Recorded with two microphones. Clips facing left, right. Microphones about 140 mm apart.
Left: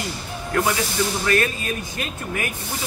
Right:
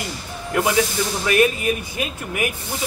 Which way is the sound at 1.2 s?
15° right (ahead or behind).